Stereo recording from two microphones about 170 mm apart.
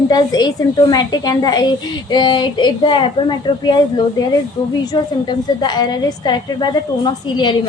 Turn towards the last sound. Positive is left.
turn(degrees=25)  # may be behind; listen again after turning